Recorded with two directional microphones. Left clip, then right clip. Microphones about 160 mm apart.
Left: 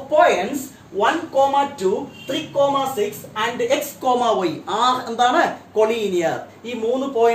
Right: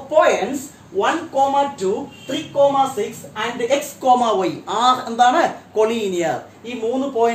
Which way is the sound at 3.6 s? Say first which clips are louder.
Right 6 dB; 20° right (ahead or behind).